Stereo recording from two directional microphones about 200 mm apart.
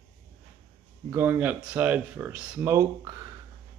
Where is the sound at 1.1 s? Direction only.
10° right (ahead or behind).